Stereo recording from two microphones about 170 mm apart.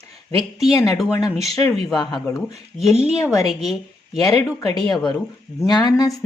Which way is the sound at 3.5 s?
Centre (ahead or behind).